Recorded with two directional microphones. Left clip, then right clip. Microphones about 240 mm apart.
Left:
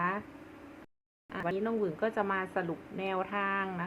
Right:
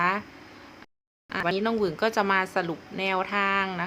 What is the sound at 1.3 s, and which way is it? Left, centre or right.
Speech, right.